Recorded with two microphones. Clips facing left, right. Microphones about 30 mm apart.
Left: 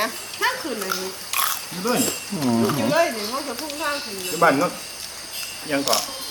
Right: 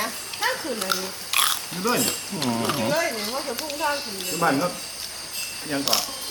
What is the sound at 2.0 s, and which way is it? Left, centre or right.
Speech, right.